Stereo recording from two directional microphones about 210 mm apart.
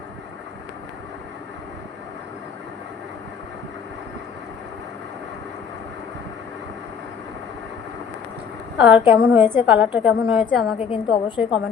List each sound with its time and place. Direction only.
8.8 s a woman's voice: 5° right (ahead or behind)
10.8 s a woman's voice: 25° left (ahead or behind)